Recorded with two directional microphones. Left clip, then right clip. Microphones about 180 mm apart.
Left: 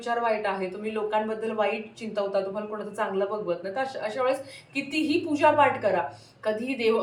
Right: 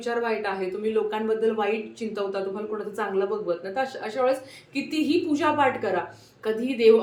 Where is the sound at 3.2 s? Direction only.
15° right (ahead or behind).